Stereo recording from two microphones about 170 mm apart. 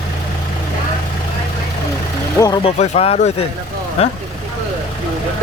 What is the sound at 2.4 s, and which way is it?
Speech, 25° left (ahead or behind).